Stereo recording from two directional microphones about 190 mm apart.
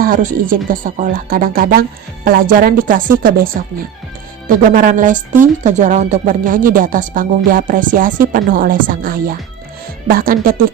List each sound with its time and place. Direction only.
0.0 s speech: 45° right (ahead or behind)